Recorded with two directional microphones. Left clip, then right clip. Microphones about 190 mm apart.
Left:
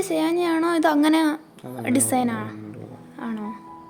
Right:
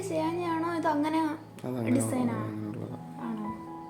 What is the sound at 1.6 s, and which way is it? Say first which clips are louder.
Speech: even; 10° right (ahead or behind).